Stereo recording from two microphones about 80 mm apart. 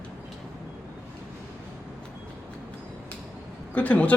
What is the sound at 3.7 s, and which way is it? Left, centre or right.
Speech, centre.